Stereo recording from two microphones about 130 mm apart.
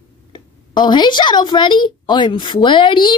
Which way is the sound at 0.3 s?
35° left (ahead or behind).